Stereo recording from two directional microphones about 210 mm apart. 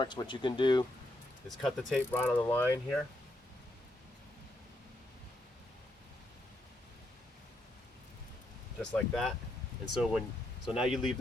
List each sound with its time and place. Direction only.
0.0 s speech: 20° left (ahead or behind)
1.5 s speech: centre (ahead or behind)
8.8 s speech: centre (ahead or behind)